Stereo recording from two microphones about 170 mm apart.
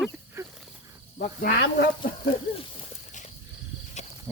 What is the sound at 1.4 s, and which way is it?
Speech, 60° left (ahead or behind).